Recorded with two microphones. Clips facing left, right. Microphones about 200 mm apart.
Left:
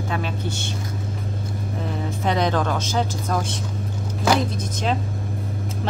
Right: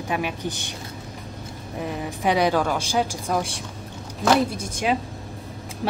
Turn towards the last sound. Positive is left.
turn(degrees=-10)  # may be behind; listen again after turning